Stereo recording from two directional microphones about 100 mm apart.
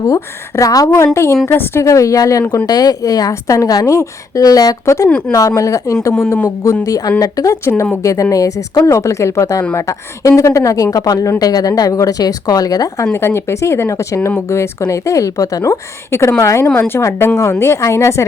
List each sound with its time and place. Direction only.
0.1 s a woman's voice: 35° left (ahead or behind)
13.1 s a woman's voice: 25° left (ahead or behind)
16.6 s speech: 20° left (ahead or behind)